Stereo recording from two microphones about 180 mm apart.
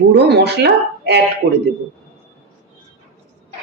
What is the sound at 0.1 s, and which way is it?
A woman's voice, 70° right (ahead or behind).